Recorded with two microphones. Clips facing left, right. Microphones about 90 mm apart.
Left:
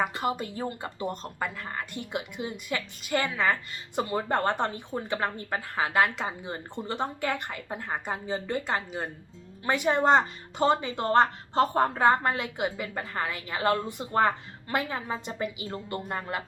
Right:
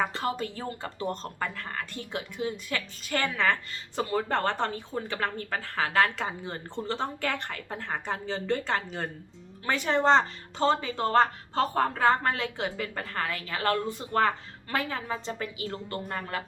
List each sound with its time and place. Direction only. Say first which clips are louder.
0.0 s a woman's voice: left 1 dB; 15° left (ahead or behind)